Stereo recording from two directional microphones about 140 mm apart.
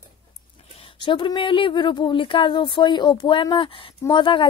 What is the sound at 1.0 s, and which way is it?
Speech, 35° left (ahead or behind).